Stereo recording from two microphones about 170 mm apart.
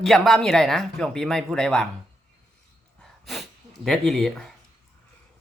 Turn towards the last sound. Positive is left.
turn(degrees=0)  # may be behind; listen again after turning